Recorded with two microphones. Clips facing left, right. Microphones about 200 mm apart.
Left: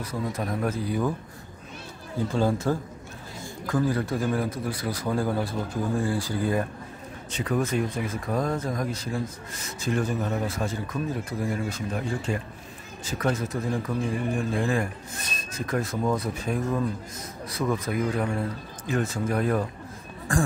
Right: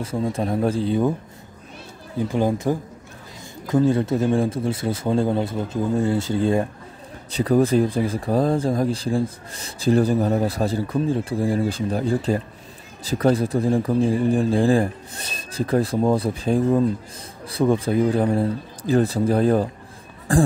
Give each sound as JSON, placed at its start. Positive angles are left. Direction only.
{"t": 0.0, "sound": "a man's voice", "side_deg": -25}
{"t": 2.1, "sound": "a man's voice", "side_deg": -15}